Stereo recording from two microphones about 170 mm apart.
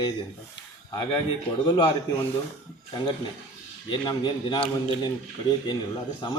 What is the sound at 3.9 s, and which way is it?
Speech, 25° left (ahead or behind).